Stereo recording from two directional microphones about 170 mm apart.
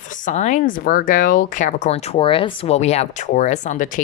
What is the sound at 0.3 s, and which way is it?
Speech, 45° left (ahead or behind).